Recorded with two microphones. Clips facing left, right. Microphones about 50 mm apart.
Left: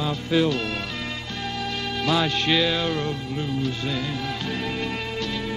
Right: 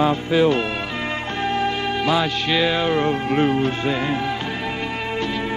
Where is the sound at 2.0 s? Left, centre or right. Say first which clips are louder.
Right 1 dB; centre.